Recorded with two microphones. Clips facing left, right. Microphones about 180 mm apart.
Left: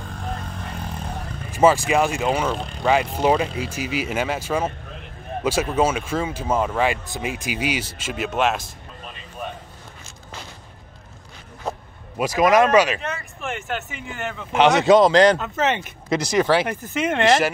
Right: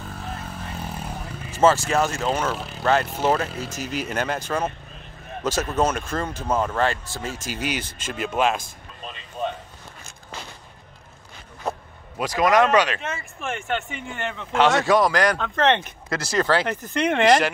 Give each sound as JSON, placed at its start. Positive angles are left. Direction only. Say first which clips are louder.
{"t": 0.1, "sound": "vehicle", "louder": "left 4 dB", "side_deg": -5}
{"t": 1.5, "sound": "speech", "louder": "left 2 dB", "side_deg": 15}
{"t": 2.5, "sound": "speech", "louder": "left 2 dB", "side_deg": -5}
{"t": 3.3, "sound": "speech", "louder": "left 4 dB", "side_deg": 10}
{"t": 12.2, "sound": "speech", "louder": "left 2 dB", "side_deg": 10}
{"t": 14.5, "sound": "speech", "louder": "left 4 dB", "side_deg": 15}
{"t": 15.3, "sound": "speech", "louder": "right 2 dB", "side_deg": 5}